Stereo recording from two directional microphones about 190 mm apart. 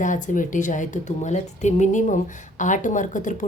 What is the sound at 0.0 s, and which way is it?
A woman's voice, 40° left (ahead or behind).